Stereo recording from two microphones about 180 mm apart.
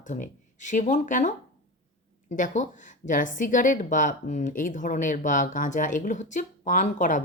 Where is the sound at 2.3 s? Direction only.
45° left (ahead or behind).